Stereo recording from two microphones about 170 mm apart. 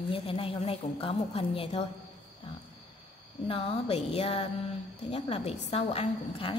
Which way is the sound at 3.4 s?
35° left (ahead or behind).